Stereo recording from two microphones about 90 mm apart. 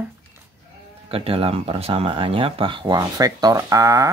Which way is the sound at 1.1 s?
90° right.